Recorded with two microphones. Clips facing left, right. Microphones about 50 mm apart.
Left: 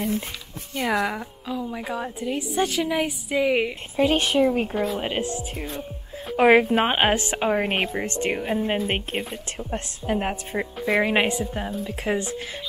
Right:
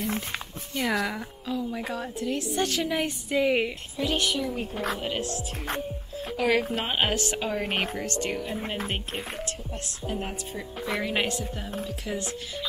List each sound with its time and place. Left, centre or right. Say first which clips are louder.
0.7 s a woman's voice: left 3 dB; centre
3.9 s a woman's voice: left 8 dB; left
11.0 s a woman's voice: left 7 dB; left
11.8 s a woman's voice: left 7 dB; left